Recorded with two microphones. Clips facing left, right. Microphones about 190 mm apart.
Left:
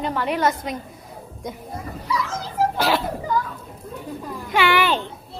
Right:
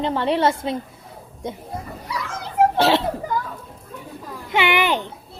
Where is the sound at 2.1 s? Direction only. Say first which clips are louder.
Left 4 dB; 60° right (ahead or behind).